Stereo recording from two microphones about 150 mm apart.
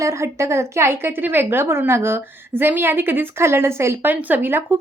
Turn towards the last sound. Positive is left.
turn(degrees=-15)  # may be behind; listen again after turning